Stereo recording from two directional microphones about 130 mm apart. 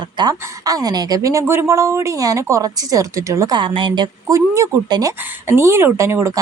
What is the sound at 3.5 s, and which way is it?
Speech, 40° right (ahead or behind).